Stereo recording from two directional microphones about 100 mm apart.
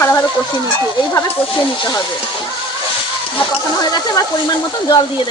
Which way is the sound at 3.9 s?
45° left (ahead or behind).